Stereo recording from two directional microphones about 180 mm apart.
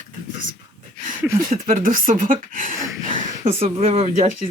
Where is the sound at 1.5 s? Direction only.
50° right (ahead or behind).